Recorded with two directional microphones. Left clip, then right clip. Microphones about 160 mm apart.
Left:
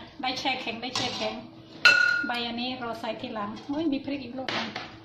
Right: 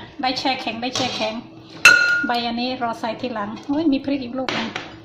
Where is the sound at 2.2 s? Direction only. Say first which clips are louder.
Right 8 dB; 20° right (ahead or behind).